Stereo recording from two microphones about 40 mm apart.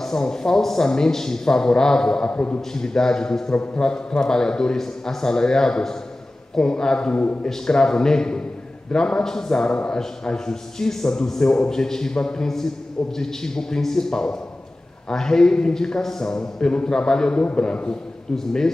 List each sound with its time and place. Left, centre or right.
0.0 s a man's voice: centre
2.3 s a man's voice: left
2.7 s a man's voice: centre